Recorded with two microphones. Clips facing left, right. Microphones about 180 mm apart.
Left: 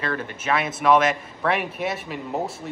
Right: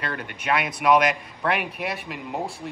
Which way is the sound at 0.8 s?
Centre (ahead or behind).